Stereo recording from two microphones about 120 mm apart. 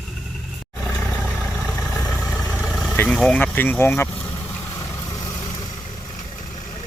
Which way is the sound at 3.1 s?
5° left (ahead or behind).